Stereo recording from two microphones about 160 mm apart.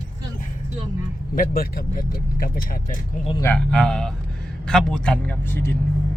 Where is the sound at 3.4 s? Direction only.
10° left (ahead or behind).